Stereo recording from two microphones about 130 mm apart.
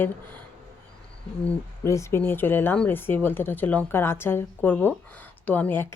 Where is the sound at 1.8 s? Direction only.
20° left (ahead or behind).